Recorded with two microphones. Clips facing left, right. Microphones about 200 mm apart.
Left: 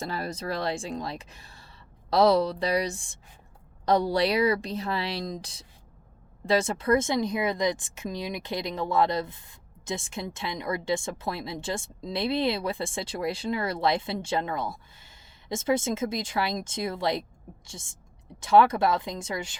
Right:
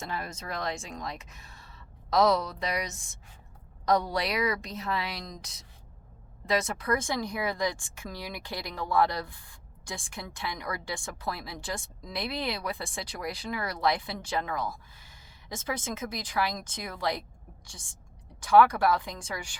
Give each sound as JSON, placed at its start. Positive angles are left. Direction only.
{"t": 0.0, "sound": "speech", "side_deg": 35}
{"t": 18.3, "sound": "speech", "side_deg": 25}